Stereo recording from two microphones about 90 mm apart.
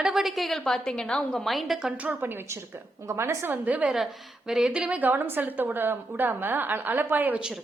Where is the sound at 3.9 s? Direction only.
Centre (ahead or behind); by 7.4 s 20° right (ahead or behind).